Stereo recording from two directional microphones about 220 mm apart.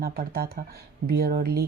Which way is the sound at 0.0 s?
45° right (ahead or behind).